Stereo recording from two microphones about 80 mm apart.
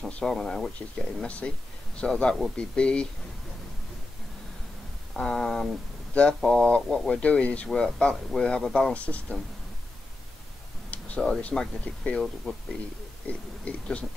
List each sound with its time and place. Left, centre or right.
0.2 s speech: centre
0.7 s speech: centre
5.1 s speech: centre
10.9 s speech: centre
13.3 s speech: centre